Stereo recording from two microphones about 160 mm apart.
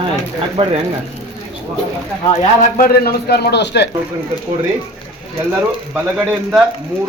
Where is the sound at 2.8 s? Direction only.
80° left.